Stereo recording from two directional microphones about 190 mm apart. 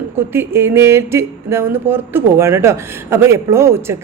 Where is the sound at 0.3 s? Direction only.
10° right (ahead or behind).